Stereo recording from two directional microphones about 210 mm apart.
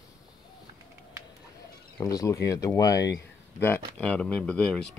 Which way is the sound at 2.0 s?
15° left (ahead or behind).